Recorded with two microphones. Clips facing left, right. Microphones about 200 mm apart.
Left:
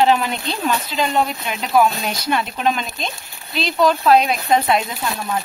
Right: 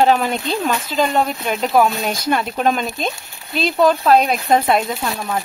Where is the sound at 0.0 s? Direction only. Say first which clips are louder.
Right 1 dB; 45° right (ahead or behind).